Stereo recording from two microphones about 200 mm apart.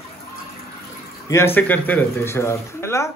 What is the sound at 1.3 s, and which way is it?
Speech, 10° left (ahead or behind).